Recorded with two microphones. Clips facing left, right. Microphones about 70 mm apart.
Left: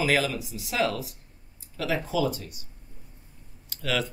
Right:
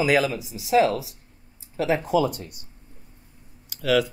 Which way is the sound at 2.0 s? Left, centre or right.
Right.